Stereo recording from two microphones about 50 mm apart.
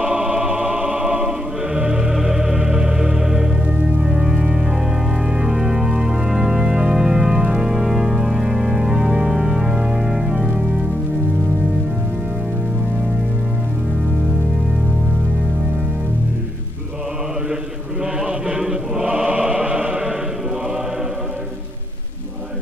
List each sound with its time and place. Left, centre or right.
0.0 s choir: right
2.1 s music: centre
4.0 s organ: centre
18.2 s chant: centre
19.0 s music: right